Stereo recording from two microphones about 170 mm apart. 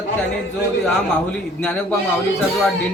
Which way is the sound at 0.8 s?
5° left (ahead or behind).